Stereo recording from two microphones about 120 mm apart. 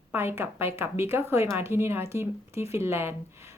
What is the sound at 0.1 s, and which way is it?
A woman's voice, 20° right (ahead or behind).